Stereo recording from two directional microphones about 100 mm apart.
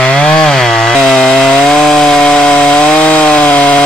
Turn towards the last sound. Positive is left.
turn(degrees=15)  # may be behind; listen again after turning